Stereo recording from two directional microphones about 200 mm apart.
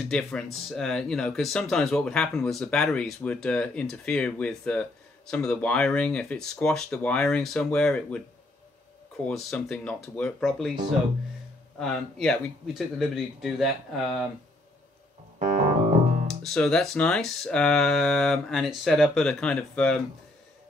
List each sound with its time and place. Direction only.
0.1 s speech: centre (ahead or behind)
9.2 s speech: 5° left (ahead or behind)
11.8 s speech: centre (ahead or behind)
15.3 s piano: 35° right (ahead or behind)
16.4 s speech: 5° left (ahead or behind)